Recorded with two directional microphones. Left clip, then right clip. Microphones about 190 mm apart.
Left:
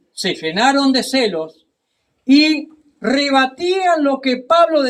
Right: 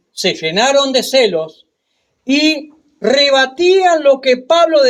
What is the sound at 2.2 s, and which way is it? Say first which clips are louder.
Speech: even; 55° right (ahead or behind).